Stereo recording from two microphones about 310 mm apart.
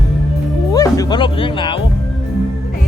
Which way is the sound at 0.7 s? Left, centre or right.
Centre.